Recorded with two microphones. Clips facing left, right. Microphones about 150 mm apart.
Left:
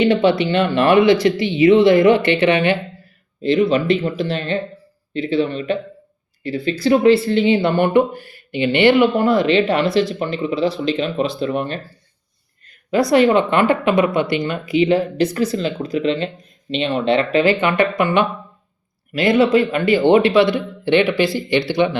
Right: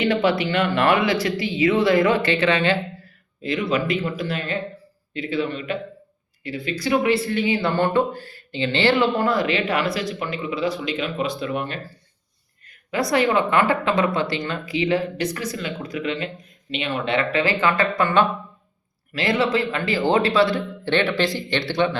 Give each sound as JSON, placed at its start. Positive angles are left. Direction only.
{"t": 0.0, "sound": "speech", "side_deg": 25}
{"t": 3.4, "sound": "speech", "side_deg": 30}